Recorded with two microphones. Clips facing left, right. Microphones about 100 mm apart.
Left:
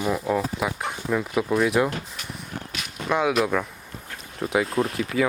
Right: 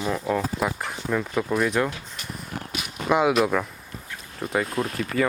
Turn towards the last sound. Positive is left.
turn(degrees=5)  # may be behind; listen again after turning